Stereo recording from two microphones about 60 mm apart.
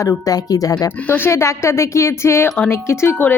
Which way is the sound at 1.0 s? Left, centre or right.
Left.